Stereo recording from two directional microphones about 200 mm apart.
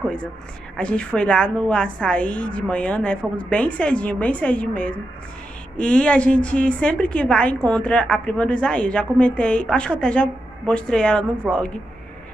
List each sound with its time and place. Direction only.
0.7 s a woman's voice: 5° left (ahead or behind)